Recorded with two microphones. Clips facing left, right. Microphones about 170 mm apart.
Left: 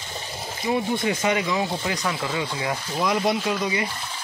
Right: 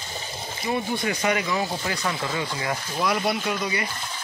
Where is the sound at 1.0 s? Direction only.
20° left (ahead or behind).